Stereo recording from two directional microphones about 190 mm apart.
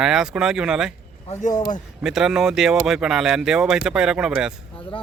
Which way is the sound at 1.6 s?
40° left (ahead or behind).